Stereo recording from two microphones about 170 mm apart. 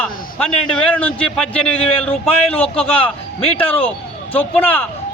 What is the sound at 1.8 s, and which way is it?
Speech, 35° left (ahead or behind).